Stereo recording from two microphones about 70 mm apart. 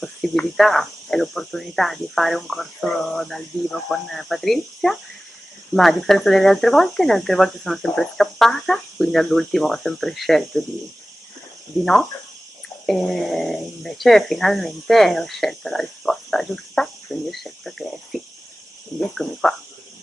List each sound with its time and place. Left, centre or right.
0.2 s speech: centre
11.8 s speech: centre